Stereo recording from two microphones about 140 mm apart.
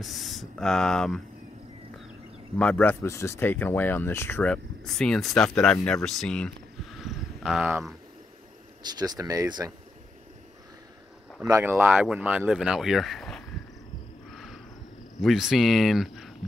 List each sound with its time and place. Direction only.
0.0 s speech: centre (ahead or behind)
2.6 s speech: 10° left (ahead or behind)
6.0 s a sound: 5° left (ahead or behind)
8.9 s speech: 30° right (ahead or behind)
11.4 s speech: 20° right (ahead or behind); by 13.4 s centre (ahead or behind)
14.3 s a sound: centre (ahead or behind)
15.2 s speech: centre (ahead or behind)